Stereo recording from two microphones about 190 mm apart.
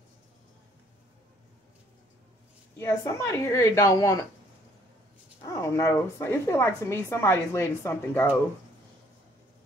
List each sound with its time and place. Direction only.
2.8 s a woman's voice: 15° left (ahead or behind)
5.4 s a woman's voice: 15° left (ahead or behind)